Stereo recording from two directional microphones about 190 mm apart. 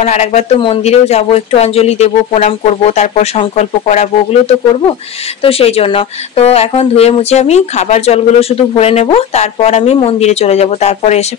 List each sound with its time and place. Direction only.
0.0 s speech: 35° left (ahead or behind)